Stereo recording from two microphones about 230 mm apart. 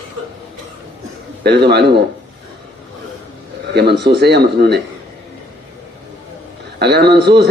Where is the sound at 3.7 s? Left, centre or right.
Right.